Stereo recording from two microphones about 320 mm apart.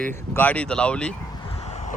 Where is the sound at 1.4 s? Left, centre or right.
Centre.